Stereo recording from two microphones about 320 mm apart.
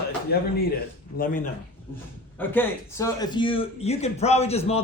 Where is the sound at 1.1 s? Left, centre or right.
Left.